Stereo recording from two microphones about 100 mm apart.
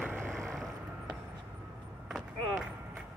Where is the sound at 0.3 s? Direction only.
5° left (ahead or behind).